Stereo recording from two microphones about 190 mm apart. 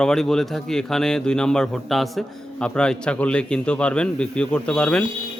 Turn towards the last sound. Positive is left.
turn(degrees=5)  # may be behind; listen again after turning